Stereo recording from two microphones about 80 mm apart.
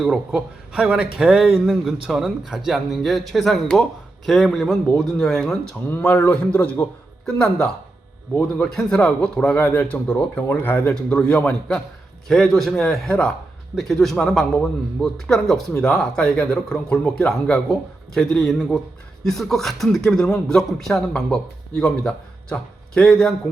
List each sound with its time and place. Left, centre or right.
0.0 s speech: centre
0.3 s a man's voice: centre
1.5 s speech: centre
6.0 s a man's voice: centre
10.9 s a man's voice: centre
12.3 s a man's voice: centre